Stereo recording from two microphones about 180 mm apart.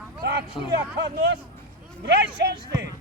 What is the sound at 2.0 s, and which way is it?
Speech, 70° right (ahead or behind).